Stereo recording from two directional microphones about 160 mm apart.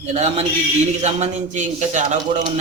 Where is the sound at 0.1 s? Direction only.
40° right (ahead or behind).